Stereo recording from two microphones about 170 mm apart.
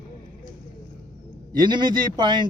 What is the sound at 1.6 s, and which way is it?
Speech, 25° right (ahead or behind).